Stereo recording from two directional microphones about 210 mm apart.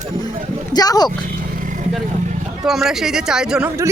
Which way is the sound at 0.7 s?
20° left (ahead or behind).